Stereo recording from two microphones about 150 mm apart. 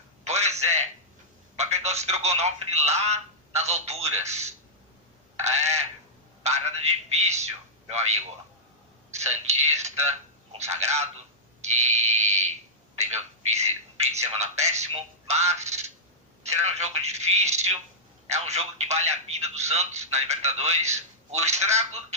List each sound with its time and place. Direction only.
0.3 s a sound: 45° right (ahead or behind)
1.5 s speech: 45° right (ahead or behind)
11.6 s fire alarm: 50° right (ahead or behind)
13.0 s telephone: 50° right (ahead or behind)
15.3 s a sound: 50° right (ahead or behind)
16.4 s speech: 50° right (ahead or behind)